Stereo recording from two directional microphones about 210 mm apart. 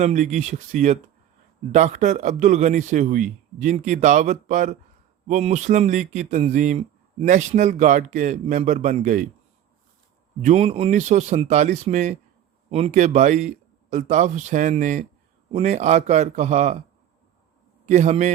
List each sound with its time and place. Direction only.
0.0 s speech: 35° right (ahead or behind)
10.4 s speech: 30° right (ahead or behind)
17.8 s speech: 35° right (ahead or behind)